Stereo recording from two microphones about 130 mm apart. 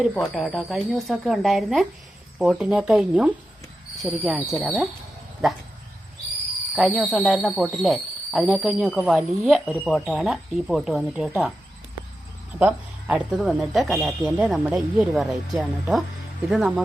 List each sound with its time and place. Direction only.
0.1 s speech: 5° left (ahead or behind)
6.7 s speech: centre (ahead or behind)
12.5 s speech: 10° right (ahead or behind)